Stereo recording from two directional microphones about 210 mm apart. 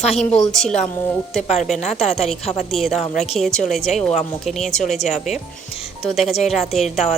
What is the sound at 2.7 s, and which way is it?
A woman's voice, centre (ahead or behind).